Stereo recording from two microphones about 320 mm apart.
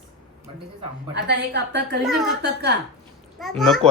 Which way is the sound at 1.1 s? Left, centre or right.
Right.